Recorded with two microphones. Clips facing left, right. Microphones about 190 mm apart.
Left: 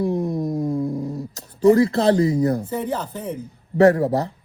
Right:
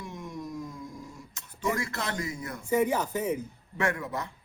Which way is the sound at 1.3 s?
35° left (ahead or behind).